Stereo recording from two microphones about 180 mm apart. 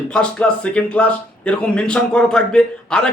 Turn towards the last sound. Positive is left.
turn(degrees=5)  # may be behind; listen again after turning